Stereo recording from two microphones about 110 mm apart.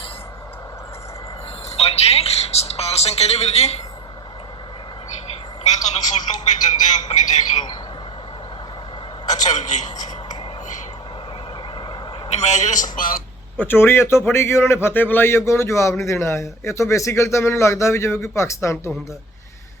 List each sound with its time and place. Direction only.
1.7 s a sound: 70° left (ahead or behind)
5.8 s speech: 90° left
9.2 s a man's voice: 90° left
12.3 s a man's voice: 90° left
13.6 s a man's voice: 20° left (ahead or behind)